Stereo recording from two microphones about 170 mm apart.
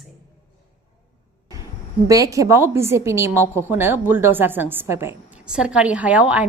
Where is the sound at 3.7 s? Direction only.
10° right (ahead or behind).